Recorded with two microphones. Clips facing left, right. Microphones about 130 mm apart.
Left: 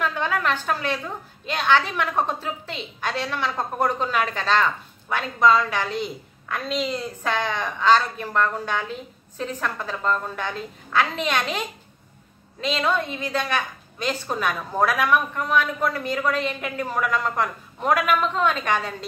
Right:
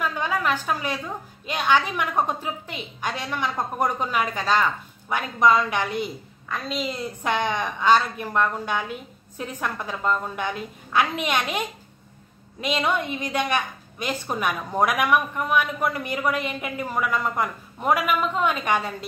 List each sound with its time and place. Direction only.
0.0 s a sound: 10° right (ahead or behind)
1.5 s a woman's voice: 15° right (ahead or behind)
7.2 s a woman's voice: 15° right (ahead or behind)